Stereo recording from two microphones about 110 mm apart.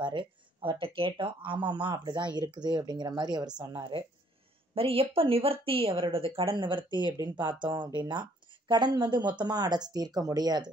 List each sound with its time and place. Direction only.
0.0 s speech: 50° right (ahead or behind)
4.7 s speech: 55° right (ahead or behind); by 10.7 s 40° right (ahead or behind)